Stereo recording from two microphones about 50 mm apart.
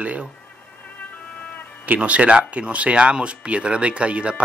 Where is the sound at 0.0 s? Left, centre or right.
Right.